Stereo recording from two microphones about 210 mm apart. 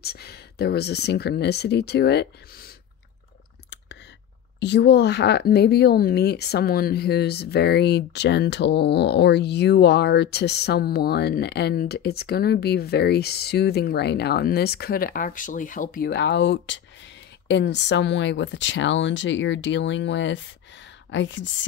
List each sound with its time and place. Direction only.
0.0 s speech: 50° left (ahead or behind)
4.6 s speech: 55° left (ahead or behind)